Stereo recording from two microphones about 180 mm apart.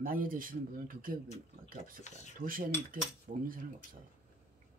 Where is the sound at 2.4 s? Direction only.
50° right (ahead or behind).